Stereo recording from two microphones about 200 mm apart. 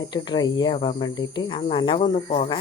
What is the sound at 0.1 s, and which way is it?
Speech, 20° left (ahead or behind).